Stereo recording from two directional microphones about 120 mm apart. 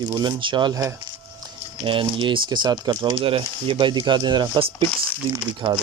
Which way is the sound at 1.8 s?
45° right (ahead or behind).